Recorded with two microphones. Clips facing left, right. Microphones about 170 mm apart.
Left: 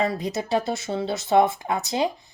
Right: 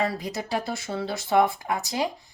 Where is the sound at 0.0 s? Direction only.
25° left (ahead or behind).